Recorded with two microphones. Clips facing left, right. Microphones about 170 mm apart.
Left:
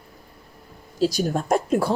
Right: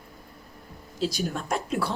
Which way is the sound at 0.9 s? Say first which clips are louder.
Left 7 dB; 40° left (ahead or behind).